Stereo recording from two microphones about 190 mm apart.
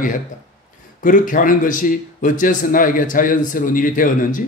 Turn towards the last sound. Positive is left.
turn(degrees=45)  # may be behind; listen again after turning